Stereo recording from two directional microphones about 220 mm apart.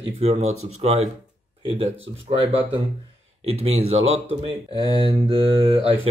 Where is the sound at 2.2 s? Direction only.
25° right (ahead or behind).